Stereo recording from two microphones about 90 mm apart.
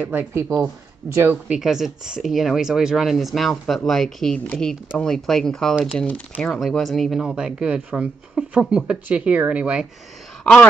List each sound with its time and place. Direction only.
0.0 s speech: 20° right (ahead or behind)
1.5 s speech: 5° right (ahead or behind)
5.9 s speech: 15° left (ahead or behind)
6.7 s speech: centre (ahead or behind)
10.4 s wail: 10° left (ahead or behind)